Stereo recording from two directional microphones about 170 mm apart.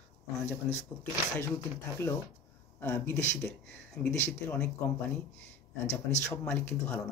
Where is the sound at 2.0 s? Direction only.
15° left (ahead or behind).